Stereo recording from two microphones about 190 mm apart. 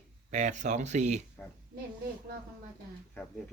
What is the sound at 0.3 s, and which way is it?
Speech, 40° right (ahead or behind).